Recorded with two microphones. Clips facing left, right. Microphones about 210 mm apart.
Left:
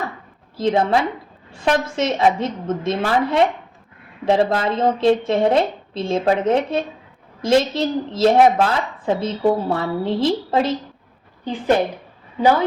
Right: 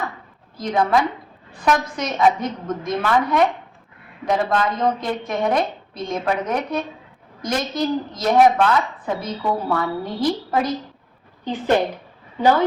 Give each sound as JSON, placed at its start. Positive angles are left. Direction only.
{"t": 0.5, "sound": "a woman's voice", "side_deg": 25}